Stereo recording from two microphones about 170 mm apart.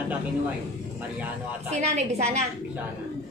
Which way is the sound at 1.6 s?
40° right (ahead or behind).